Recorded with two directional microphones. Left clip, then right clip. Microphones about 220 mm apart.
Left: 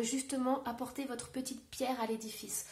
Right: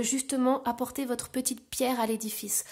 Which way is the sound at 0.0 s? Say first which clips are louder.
Right 7 dB; 45° right (ahead or behind).